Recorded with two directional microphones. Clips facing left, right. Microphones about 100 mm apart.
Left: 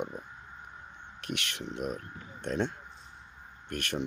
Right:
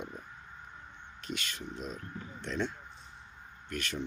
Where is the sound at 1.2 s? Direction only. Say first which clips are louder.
Left 3 dB; 65° left (ahead or behind).